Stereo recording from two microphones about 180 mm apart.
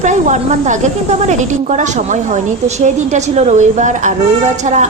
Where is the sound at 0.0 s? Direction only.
40° right (ahead or behind).